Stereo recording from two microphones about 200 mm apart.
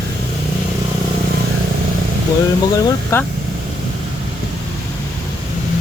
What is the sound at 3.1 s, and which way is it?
Speech, 15° left (ahead or behind).